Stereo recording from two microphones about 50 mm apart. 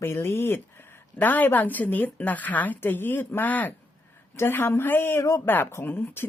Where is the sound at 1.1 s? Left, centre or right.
Left.